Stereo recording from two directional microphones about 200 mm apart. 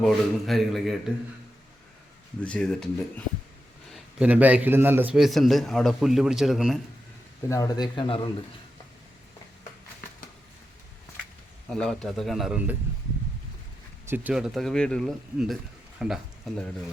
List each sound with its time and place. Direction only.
0.0 s a man's voice: centre (ahead or behind)
2.4 s a man's voice: 5° left (ahead or behind)
3.9 s a man's voice: 5° right (ahead or behind)
7.4 s speech: 15° left (ahead or behind)
11.7 s a man's voice: 5° left (ahead or behind)
14.1 s a man's voice: 5° right (ahead or behind)